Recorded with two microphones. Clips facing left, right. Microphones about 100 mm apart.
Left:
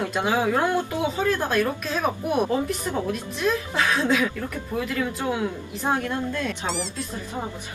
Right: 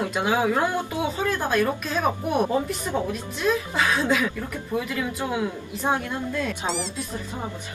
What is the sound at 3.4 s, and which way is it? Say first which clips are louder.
Speech: right 1 dB; centre (ahead or behind).